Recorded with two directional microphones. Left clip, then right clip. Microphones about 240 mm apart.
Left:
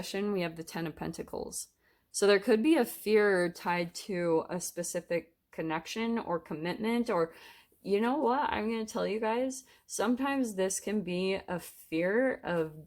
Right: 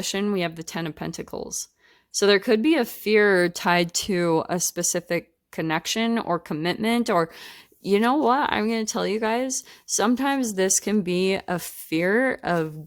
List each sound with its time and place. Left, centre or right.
0.0 s speech: right